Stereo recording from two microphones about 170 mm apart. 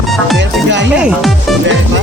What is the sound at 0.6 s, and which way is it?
Speech, 90° right.